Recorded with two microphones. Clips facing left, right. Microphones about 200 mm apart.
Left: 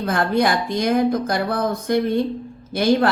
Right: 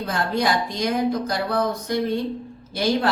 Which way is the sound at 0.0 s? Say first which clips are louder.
Left 4 dB; 55° left (ahead or behind).